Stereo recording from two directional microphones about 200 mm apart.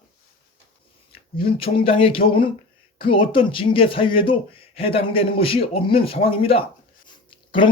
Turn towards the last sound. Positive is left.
turn(degrees=25)  # may be behind; listen again after turning